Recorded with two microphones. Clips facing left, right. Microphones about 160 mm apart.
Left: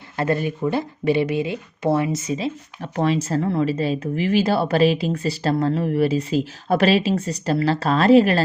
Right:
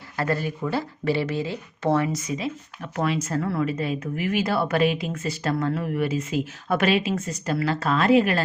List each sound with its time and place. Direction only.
0.2 s speech: 20° left (ahead or behind)
2.1 s speech: 25° left (ahead or behind)